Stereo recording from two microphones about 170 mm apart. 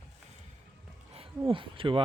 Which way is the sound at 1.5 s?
30° right (ahead or behind).